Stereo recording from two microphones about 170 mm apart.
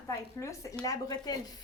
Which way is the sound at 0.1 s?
20° left (ahead or behind).